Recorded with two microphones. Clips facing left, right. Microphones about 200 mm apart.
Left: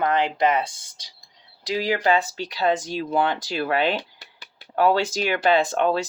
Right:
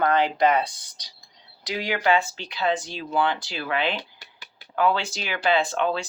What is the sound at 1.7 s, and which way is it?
Speech, 35° left (ahead or behind).